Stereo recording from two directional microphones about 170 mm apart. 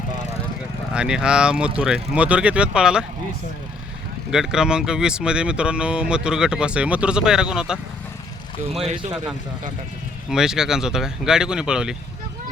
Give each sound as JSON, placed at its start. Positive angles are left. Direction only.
{"t": 0.9, "sound": "speech", "side_deg": -5}
{"t": 4.3, "sound": "speech", "side_deg": -5}
{"t": 8.8, "sound": "speech", "side_deg": -35}
{"t": 10.2, "sound": "speech", "side_deg": -5}